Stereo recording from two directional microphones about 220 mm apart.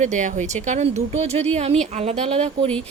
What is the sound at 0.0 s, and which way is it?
A woman's voice, 35° right (ahead or behind).